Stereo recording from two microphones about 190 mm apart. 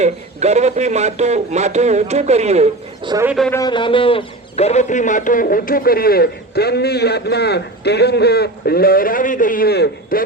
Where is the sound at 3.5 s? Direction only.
20° left (ahead or behind).